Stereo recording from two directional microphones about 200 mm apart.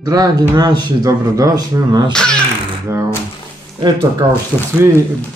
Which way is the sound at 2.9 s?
15° right (ahead or behind).